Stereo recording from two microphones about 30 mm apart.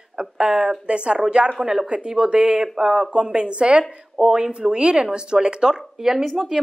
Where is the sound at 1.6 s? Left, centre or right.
Centre.